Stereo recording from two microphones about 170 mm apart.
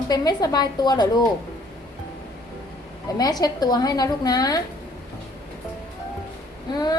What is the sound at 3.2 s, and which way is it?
A woman's voice, 20° left (ahead or behind).